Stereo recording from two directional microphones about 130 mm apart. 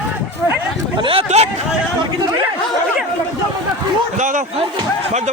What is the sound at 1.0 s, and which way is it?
Speech, 50° right (ahead or behind).